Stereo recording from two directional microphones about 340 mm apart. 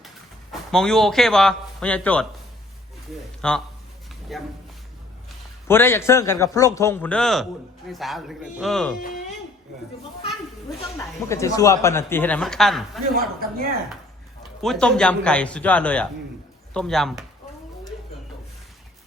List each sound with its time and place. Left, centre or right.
0.7 s a man's voice: centre
3.4 s a man's voice: centre
5.6 s a man's voice: centre
10.9 s speech: centre
13.1 s speech: right
14.6 s a man's voice: centre